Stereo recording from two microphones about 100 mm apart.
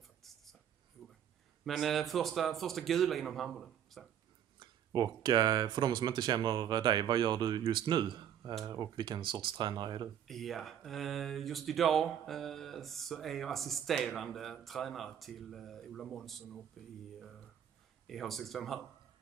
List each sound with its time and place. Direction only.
1.6 s speech: centre (ahead or behind)
4.6 s speech: 45° right (ahead or behind)
10.2 s speech: centre (ahead or behind)
18.0 s speech: centre (ahead or behind)